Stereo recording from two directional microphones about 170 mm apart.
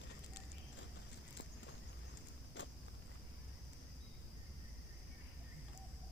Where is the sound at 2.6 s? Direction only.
90° left.